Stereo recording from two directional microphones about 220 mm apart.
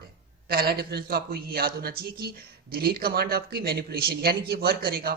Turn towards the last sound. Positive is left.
turn(degrees=-45)  # may be behind; listen again after turning